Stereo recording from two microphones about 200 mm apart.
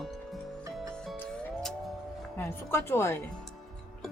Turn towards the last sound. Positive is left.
turn(degrees=10)  # may be behind; listen again after turning